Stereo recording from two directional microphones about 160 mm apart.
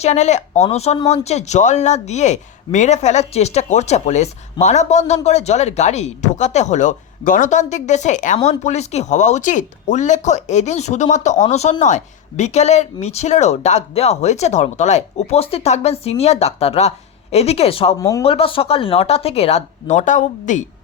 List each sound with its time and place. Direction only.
0.0 s speech: 45° left (ahead or behind)
18.0 s speech: 20° left (ahead or behind)
18.3 s speech: 35° left (ahead or behind)